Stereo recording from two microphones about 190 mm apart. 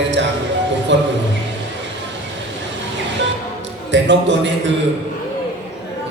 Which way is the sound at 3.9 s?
70° right (ahead or behind).